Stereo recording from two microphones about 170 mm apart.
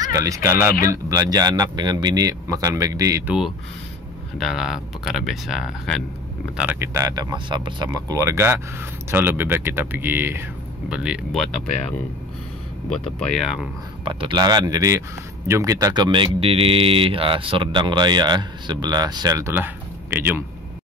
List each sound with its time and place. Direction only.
0.0 s speech: 20° right (ahead or behind)
4.4 s speech: centre (ahead or behind)
12.9 s speech: 5° left (ahead or behind)
14.0 s speech: 30° right (ahead or behind); by 20.3 s 10° right (ahead or behind)